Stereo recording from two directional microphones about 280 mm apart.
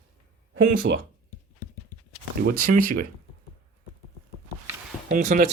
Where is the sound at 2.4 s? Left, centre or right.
Right.